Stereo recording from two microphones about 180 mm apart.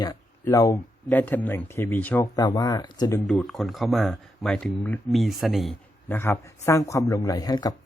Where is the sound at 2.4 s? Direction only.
20° left (ahead or behind).